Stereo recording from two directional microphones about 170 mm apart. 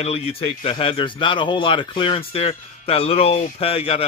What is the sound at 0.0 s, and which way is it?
Speech, 35° left (ahead or behind).